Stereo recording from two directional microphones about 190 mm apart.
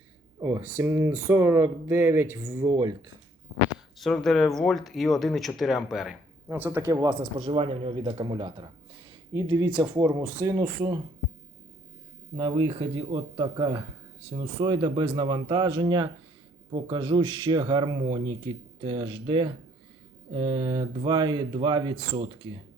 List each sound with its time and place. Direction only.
0.4 s speech: 15° right (ahead or behind)
3.9 s speech: centre (ahead or behind); by 8.7 s 25° right (ahead or behind)
9.3 s speech: 15° right (ahead or behind)
12.4 s speech: 20° right (ahead or behind)